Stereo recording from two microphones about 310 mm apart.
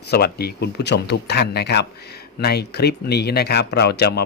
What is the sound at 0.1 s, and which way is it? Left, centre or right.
Speech, left.